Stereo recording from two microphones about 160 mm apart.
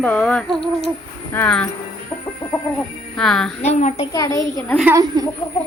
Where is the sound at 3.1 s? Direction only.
5° left (ahead or behind).